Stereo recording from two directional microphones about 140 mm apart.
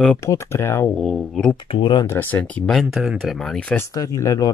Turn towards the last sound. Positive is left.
turn(degrees=25)  # may be behind; listen again after turning